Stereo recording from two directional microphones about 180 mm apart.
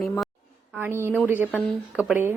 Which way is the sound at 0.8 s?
15° right (ahead or behind).